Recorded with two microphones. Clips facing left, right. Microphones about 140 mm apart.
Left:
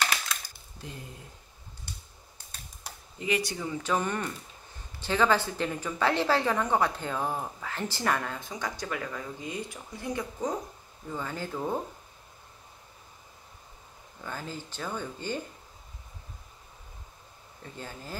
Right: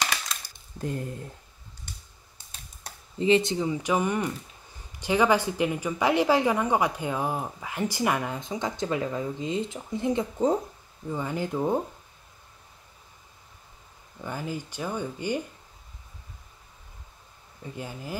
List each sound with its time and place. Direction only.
0.7 s speech: 50° right (ahead or behind)
3.2 s speech: 25° right (ahead or behind)
11.1 s speech: 15° right (ahead or behind)
14.2 s speech: 15° right (ahead or behind)
17.7 s speech: 15° right (ahead or behind)